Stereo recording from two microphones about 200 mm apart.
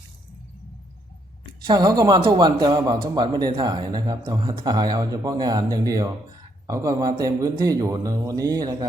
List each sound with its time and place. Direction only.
1.6 s a man's voice: 20° right (ahead or behind)